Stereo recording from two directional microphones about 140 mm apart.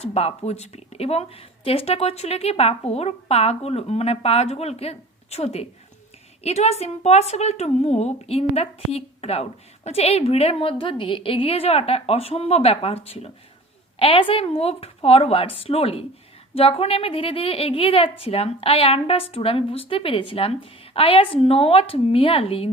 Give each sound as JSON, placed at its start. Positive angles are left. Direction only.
{"t": 0.0, "sound": "a woman's voice", "side_deg": 50}